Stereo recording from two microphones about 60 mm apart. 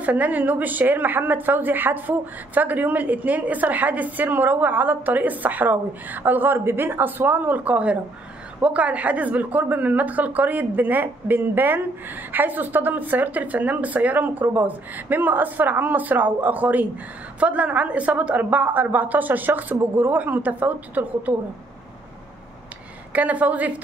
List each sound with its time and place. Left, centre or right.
0.0 s a woman's voice: right
23.1 s a woman's voice: right